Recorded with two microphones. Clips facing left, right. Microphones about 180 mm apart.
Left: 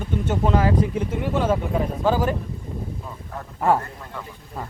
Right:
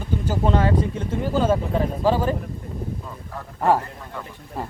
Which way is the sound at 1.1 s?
30° right (ahead or behind).